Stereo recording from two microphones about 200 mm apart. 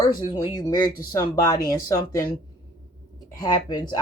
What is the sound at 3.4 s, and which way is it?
Speech, 20° left (ahead or behind).